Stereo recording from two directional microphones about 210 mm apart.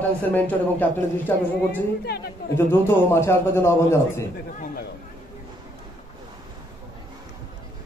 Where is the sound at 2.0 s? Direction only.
45° left (ahead or behind).